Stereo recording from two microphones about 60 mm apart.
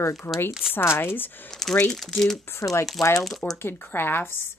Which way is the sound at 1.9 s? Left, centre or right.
Centre.